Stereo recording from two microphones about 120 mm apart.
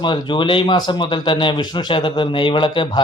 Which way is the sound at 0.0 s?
40° left (ahead or behind).